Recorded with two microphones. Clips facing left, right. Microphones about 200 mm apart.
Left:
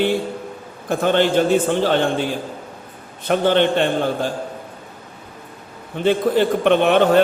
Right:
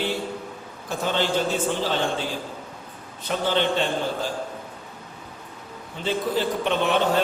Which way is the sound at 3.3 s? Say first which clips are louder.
Left 7 dB; 60° left (ahead or behind).